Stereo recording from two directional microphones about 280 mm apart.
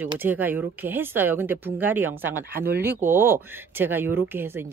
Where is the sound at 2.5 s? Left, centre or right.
Right.